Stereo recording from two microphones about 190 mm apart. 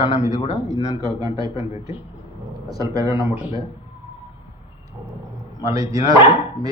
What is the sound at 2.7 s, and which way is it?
Speech, 20° right (ahead or behind).